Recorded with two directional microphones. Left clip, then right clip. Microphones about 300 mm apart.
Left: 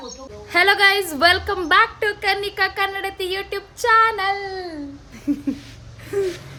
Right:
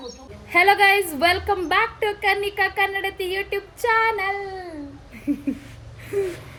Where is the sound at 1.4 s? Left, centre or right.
Centre.